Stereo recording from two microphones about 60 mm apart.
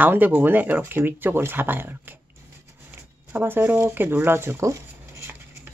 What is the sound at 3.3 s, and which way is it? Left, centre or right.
Speech, right.